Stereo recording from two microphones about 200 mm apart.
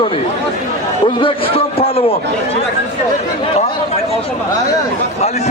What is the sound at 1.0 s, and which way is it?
A man's voice, 25° left (ahead or behind).